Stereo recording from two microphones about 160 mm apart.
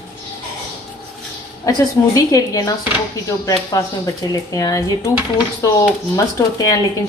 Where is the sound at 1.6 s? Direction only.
20° left (ahead or behind).